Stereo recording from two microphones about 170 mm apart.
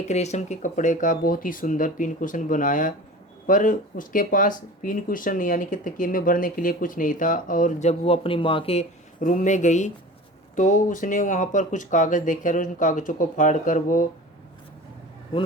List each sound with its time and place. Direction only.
0.1 s speech: 40° left (ahead or behind)